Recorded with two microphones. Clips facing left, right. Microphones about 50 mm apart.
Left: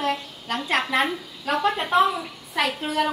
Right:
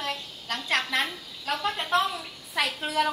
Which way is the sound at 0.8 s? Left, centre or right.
Left.